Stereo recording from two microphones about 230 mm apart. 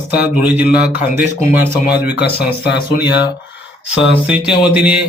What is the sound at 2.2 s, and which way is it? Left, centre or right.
Speech, left.